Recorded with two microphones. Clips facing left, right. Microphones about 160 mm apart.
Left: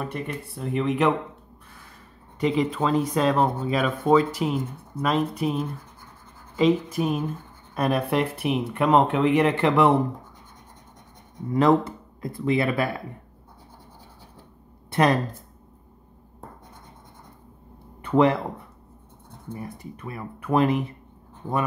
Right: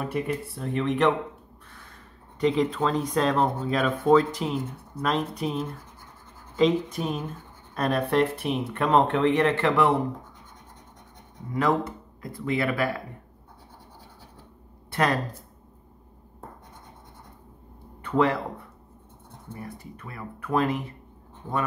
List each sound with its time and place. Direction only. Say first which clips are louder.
0.0 s speech: right 3 dB; 5° right (ahead or behind)
2.4 s speech: even; 5° left (ahead or behind); by 9.9 s 20° left (ahead or behind)
11.5 s speech: left 5 dB; 25° left (ahead or behind)
14.9 s a sound: left 4 dB; 20° left (ahead or behind)
18.0 s speech: left 4 dB; 20° left (ahead or behind)
19.5 s speech: left 3 dB; 20° left (ahead or behind)